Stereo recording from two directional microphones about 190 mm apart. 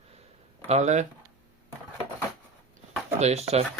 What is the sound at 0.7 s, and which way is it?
Speech, 35° right (ahead or behind).